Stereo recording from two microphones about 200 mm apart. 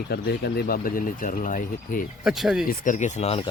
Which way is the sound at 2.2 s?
Centre (ahead or behind).